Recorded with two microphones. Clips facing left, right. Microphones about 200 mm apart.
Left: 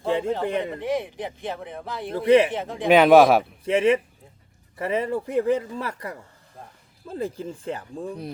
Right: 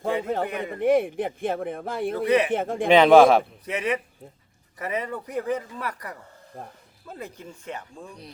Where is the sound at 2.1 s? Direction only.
25° left (ahead or behind).